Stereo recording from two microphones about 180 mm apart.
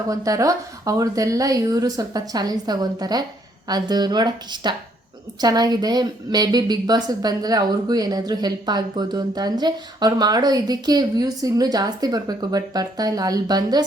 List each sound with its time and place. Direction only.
0.1 s a woman's voice: 20° right (ahead or behind)